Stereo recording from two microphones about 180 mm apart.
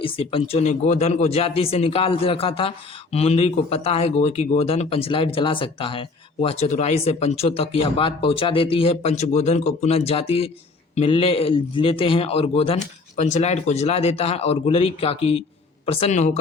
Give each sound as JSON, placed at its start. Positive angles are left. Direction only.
{"t": 0.0, "sound": "a man's voice", "side_deg": 30}